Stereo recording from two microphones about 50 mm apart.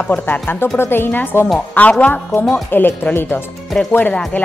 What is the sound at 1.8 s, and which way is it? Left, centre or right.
Speech, left.